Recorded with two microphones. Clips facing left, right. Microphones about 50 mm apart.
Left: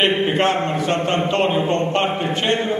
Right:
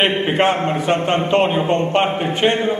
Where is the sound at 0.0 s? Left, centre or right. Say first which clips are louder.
Right 1 dB; centre.